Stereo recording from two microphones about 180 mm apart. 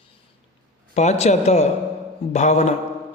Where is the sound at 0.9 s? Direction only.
40° left (ahead or behind).